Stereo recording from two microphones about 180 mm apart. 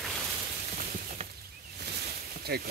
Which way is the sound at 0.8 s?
55° right (ahead or behind).